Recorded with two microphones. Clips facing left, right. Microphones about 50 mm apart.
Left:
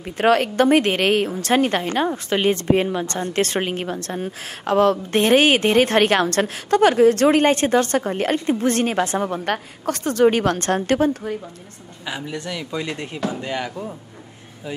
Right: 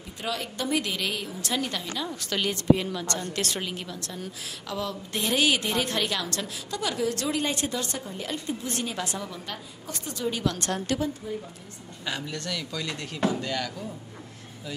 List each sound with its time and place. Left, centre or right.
0.0 s a woman's voice: left
2.1 s a woman's voice: left
12.0 s speech: centre